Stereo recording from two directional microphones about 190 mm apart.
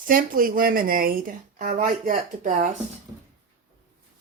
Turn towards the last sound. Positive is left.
turn(degrees=-45)  # may be behind; listen again after turning